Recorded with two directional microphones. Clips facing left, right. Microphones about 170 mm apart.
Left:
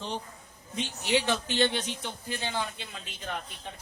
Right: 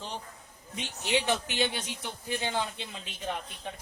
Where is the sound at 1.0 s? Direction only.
20° right (ahead or behind).